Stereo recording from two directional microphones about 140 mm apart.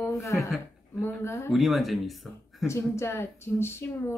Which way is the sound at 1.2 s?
20° left (ahead or behind).